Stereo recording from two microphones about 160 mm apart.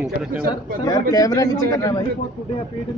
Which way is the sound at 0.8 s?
25° left (ahead or behind).